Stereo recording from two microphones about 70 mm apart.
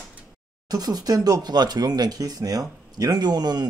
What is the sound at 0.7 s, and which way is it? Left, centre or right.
Speech, right.